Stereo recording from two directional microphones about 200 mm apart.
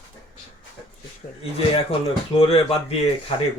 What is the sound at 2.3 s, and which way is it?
Speech, 30° left (ahead or behind).